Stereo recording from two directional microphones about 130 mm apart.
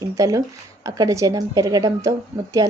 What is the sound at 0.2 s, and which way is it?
Speech, 25° right (ahead or behind).